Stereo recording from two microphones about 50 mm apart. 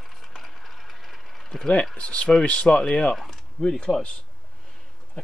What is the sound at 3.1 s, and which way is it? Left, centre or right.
Speech, centre.